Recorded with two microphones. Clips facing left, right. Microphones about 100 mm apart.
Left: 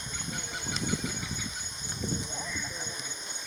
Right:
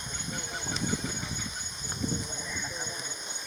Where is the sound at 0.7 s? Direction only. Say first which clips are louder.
Even; 35° right (ahead or behind).